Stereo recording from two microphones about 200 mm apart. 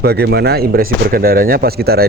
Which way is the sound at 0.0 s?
50° right (ahead or behind).